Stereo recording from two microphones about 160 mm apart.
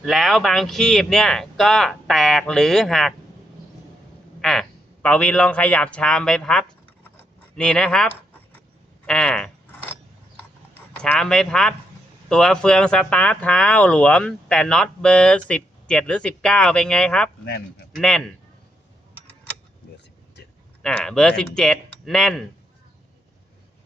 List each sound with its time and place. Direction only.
0.0 s speech: centre (ahead or behind)
4.4 s a sound: 5° left (ahead or behind)
5.0 s a man's voice: 10° left (ahead or behind)
11.0 s speech: 5° left (ahead or behind)
17.4 s speech: 90° left
17.9 s speech: 5° left (ahead or behind)
20.8 s speech: 5° left (ahead or behind)